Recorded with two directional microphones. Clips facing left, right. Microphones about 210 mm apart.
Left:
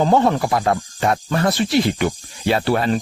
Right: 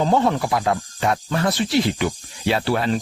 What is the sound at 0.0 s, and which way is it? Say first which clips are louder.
Speech: left 3 dB; 50° left (ahead or behind).